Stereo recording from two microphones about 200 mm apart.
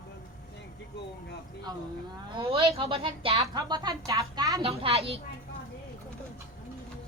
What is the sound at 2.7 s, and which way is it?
Speech, 30° right (ahead or behind).